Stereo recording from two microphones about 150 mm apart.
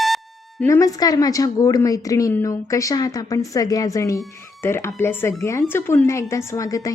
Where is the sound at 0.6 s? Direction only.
20° left (ahead or behind).